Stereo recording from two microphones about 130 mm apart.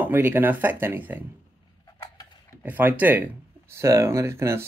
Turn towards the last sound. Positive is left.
turn(degrees=-20)  # may be behind; listen again after turning